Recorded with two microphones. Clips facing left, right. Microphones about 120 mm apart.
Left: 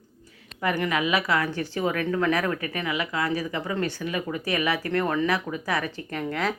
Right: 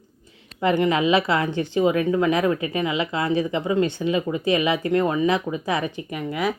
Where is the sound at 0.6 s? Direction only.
25° right (ahead or behind).